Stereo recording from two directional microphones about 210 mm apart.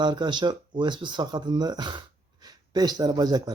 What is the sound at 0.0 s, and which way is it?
Speech, 20° right (ahead or behind).